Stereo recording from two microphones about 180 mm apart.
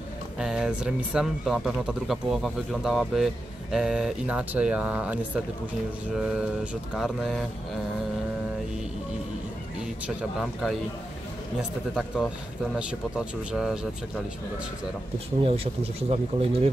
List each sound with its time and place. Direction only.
0.4 s speech: 5° right (ahead or behind)
10.0 s speech: centre (ahead or behind)
12.7 s speech: 5° right (ahead or behind)
15.4 s speech: 30° right (ahead or behind)